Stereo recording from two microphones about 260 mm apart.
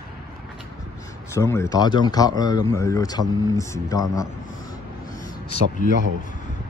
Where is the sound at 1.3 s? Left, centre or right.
Centre.